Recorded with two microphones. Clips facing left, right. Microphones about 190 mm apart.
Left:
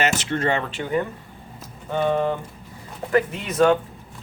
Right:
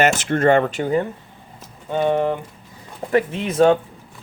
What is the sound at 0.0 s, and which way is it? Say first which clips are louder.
Speech: right 6 dB; 50° right (ahead or behind).